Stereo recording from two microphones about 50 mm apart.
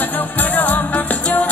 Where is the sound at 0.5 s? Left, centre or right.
Left.